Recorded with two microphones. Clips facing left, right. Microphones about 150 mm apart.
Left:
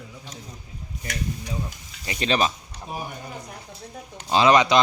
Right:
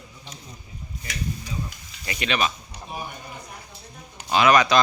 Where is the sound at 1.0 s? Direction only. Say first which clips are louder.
Left 1 dB; 55° left (ahead or behind).